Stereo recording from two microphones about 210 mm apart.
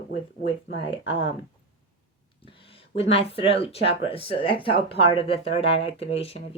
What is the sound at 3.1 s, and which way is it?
Speech, 30° left (ahead or behind).